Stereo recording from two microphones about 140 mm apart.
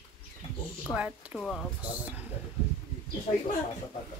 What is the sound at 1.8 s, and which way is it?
Speech, 10° right (ahead or behind).